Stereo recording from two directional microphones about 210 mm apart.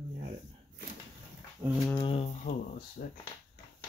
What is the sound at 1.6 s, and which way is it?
Speech, 15° right (ahead or behind).